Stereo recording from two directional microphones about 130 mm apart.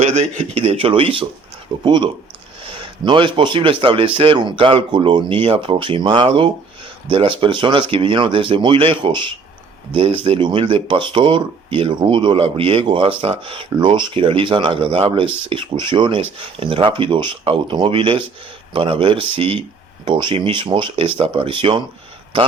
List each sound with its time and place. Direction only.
0.0 s speech: 55° right (ahead or behind)